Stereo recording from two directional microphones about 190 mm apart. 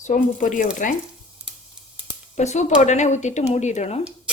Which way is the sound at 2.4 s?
35° left (ahead or behind).